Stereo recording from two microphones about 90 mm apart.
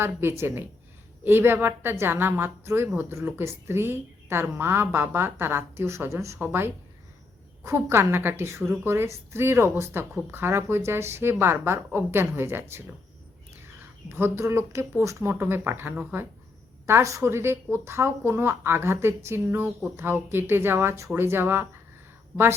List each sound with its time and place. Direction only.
0.0 s a woman's voice: 25° right (ahead or behind)
14.1 s a woman's voice: 25° right (ahead or behind)